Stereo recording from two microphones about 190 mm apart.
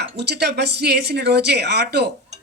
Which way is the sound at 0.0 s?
60° right (ahead or behind).